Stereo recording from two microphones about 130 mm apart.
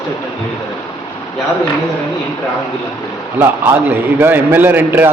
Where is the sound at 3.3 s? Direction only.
15° right (ahead or behind).